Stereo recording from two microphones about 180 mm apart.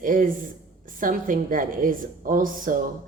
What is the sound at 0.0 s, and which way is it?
Speech, 50° right (ahead or behind).